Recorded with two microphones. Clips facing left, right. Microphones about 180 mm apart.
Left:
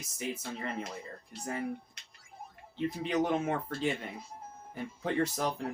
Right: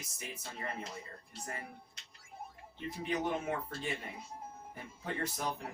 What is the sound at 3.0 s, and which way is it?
Speech, 85° left.